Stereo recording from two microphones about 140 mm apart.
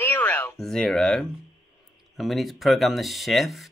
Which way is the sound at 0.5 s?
5° left (ahead or behind).